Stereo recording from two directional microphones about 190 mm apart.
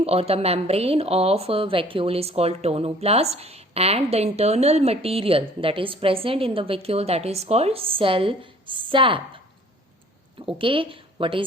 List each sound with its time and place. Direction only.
0.0 s a woman's voice: 30° right (ahead or behind)
10.4 s a woman's voice: 25° right (ahead or behind)